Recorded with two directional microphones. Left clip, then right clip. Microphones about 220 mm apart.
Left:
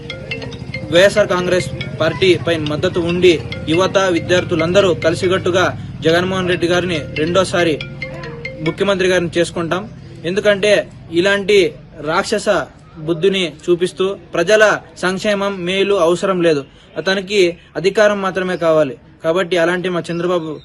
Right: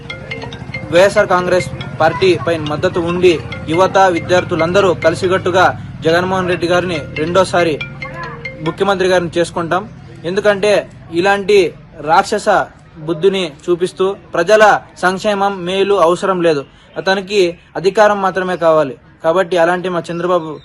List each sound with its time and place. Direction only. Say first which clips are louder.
0.9 s a man's voice: right 1 dB; 10° left (ahead or behind)
7.8 s music: right 3 dB; 25° right (ahead or behind)
8.7 s a man's voice: right 2 dB; 10° left (ahead or behind)